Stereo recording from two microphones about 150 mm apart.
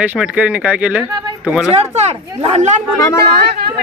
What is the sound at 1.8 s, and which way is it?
Speech, 45° right (ahead or behind).